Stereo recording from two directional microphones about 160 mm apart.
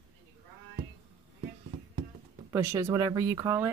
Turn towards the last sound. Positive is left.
turn(degrees=-15)  # may be behind; listen again after turning